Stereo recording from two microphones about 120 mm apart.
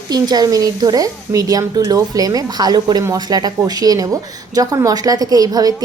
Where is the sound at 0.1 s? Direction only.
35° right (ahead or behind).